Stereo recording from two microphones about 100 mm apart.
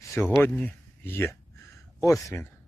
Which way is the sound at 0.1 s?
25° left (ahead or behind).